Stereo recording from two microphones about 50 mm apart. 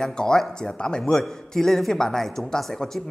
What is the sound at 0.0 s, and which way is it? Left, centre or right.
Speech, centre.